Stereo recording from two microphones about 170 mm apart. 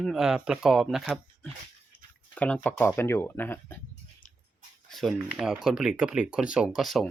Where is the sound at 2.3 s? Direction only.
10° left (ahead or behind).